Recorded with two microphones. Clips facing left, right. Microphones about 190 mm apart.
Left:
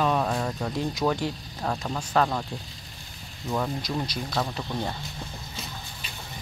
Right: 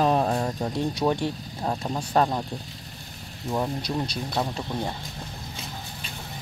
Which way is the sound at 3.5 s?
20° right (ahead or behind).